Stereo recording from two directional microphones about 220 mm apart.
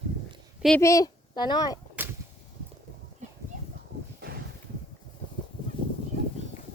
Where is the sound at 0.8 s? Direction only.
15° left (ahead or behind).